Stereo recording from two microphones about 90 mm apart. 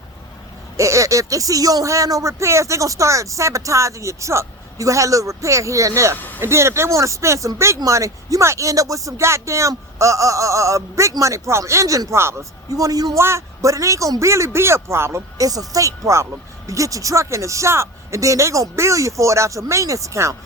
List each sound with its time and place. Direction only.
0.8 s speech: 35° right (ahead or behind)
6.1 s a sound: 20° left (ahead or behind)
6.4 s speech: 30° right (ahead or behind)
15.4 s speech: 40° right (ahead or behind)